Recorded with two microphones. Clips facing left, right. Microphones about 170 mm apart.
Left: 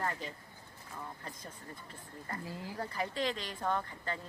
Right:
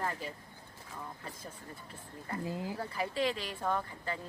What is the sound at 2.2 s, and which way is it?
Speech, 15° right (ahead or behind).